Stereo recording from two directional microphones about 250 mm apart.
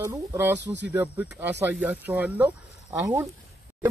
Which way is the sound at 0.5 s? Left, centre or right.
Right.